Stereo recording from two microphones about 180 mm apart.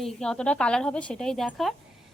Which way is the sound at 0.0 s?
5° left (ahead or behind).